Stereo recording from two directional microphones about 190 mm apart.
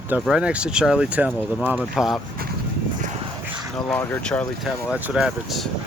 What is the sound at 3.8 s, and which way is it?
Speech, 5° left (ahead or behind).